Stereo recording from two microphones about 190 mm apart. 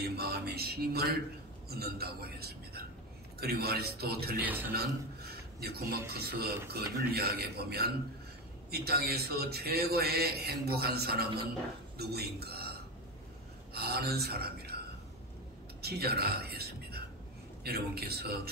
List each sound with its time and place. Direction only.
0.0 s a sound: 55° right (ahead or behind)
1.7 s a man's voice: 55° right (ahead or behind)
4.4 s a man's voice: 10° right (ahead or behind)
5.6 s a man's voice: 55° right (ahead or behind)
13.7 s speech: 55° right (ahead or behind)
15.8 s a man's voice: 55° right (ahead or behind)